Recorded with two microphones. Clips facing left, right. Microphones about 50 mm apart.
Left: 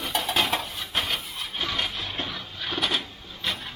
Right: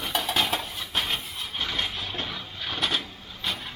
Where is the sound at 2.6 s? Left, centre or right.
Centre.